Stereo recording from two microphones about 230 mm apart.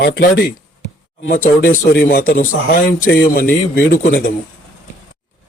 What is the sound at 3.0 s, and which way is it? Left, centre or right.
Speech, left.